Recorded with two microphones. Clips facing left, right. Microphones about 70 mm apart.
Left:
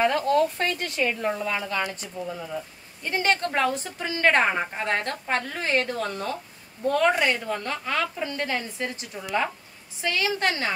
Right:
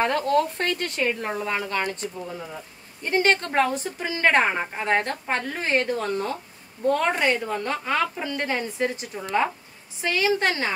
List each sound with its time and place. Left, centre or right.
0.0 s a woman's voice: right
0.9 s a woman's voice: right
4.0 s a woman's voice: centre